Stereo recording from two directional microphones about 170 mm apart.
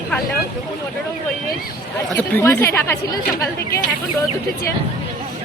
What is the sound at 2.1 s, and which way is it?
Speech, 10° left (ahead or behind).